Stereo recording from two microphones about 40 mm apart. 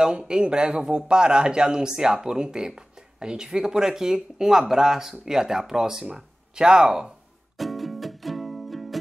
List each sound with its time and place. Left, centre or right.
0.0 s a man's voice: centre
7.5 s music: centre